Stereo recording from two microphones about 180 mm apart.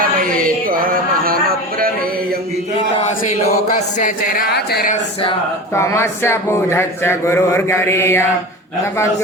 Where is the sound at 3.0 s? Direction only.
40° left (ahead or behind); by 4.9 s 60° left (ahead or behind).